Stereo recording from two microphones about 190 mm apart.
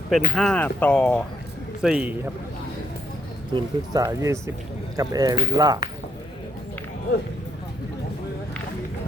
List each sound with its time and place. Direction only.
0.3 s speech: 5° left (ahead or behind)
1.8 s a man's voice: 5° right (ahead or behind)
3.5 s speech: 20° right (ahead or behind)